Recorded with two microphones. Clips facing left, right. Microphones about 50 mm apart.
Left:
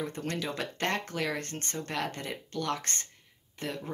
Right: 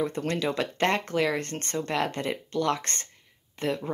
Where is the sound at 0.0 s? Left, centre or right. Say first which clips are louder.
Right 6 dB; right.